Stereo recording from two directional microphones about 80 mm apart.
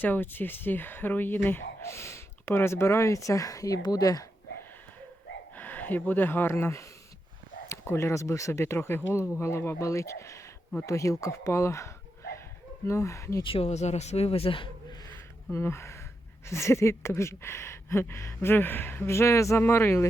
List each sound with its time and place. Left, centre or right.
0.0 s speech: left
5.5 s speech: left
12.9 s speech: left
14.1 s speech: left
14.5 s a sound: left
15.5 s speech: left